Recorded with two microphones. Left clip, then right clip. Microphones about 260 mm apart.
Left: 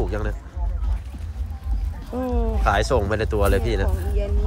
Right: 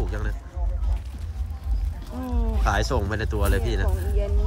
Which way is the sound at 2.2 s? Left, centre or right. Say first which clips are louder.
Left 7 dB; centre.